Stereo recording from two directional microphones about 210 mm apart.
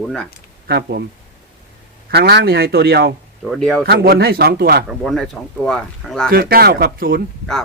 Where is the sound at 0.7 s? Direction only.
50° right (ahead or behind).